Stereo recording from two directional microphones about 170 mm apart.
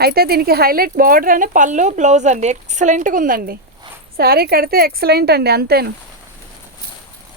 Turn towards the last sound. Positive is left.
turn(degrees=-70)  # may be behind; listen again after turning